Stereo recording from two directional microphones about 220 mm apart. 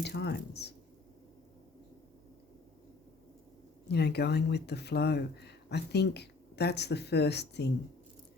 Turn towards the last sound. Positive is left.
turn(degrees=50)  # may be behind; listen again after turning